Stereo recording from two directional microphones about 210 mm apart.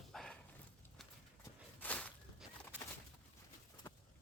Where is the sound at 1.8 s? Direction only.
5° left (ahead or behind).